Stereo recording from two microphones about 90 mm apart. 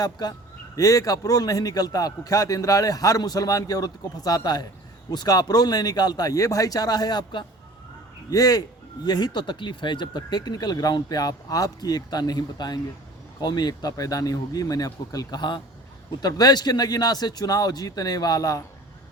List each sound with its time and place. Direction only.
0.0 s a man's voice: 45° left (ahead or behind)
8.3 s a man's voice: 40° left (ahead or behind)